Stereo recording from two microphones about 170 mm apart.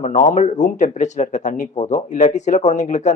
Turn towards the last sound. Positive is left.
turn(degrees=45)  # may be behind; listen again after turning